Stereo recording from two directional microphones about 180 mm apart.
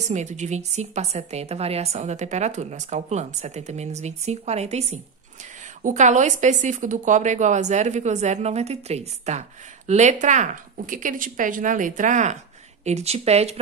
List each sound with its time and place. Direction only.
0.1 s a woman's voice: 40° right (ahead or behind)